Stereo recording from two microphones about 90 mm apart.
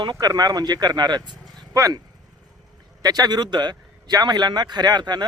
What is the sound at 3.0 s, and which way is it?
A man's voice, 50° right (ahead or behind).